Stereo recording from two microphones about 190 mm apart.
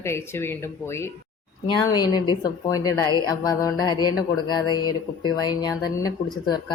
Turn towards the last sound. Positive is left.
turn(degrees=20)  # may be behind; listen again after turning